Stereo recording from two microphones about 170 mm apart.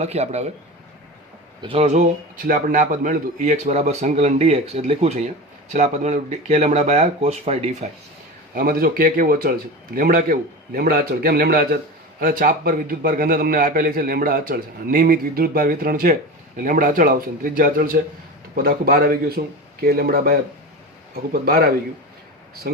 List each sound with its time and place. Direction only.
0.0 s speech: 40° right (ahead or behind)
1.6 s speech: 35° right (ahead or behind)
2.5 s a man's voice: 50° right (ahead or behind)
8.5 s a man's voice: 60° right (ahead or behind)
21.4 s a man's voice: 60° right (ahead or behind)